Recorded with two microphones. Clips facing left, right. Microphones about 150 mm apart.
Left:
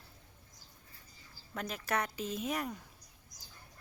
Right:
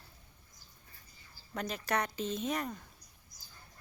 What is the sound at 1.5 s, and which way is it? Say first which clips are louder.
Speech: right 1 dB; centre (ahead or behind).